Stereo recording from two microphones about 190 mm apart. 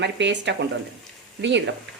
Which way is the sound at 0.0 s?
70° right (ahead or behind).